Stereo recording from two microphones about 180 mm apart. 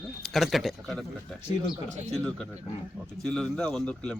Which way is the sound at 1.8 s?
40° right (ahead or behind).